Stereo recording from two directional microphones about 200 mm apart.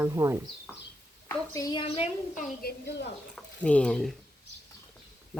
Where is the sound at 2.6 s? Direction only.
55° left (ahead or behind).